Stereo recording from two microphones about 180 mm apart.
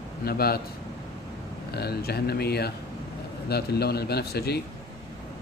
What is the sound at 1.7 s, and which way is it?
Speech, 60° left (ahead or behind).